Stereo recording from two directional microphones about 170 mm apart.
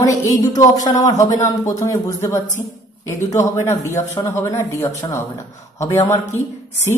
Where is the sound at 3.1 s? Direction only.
45° left (ahead or behind).